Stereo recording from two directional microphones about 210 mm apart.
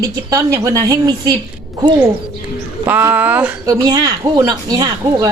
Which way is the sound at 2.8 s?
10° right (ahead or behind).